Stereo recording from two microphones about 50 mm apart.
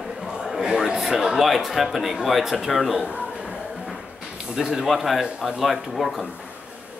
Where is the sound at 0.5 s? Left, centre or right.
Centre.